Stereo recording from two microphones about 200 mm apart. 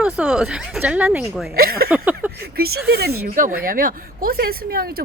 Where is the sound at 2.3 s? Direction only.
50° right (ahead or behind).